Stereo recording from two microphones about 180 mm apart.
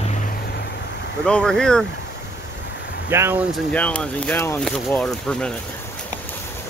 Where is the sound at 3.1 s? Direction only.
15° right (ahead or behind).